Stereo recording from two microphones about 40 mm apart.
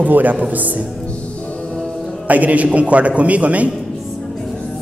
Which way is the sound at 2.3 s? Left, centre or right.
Right.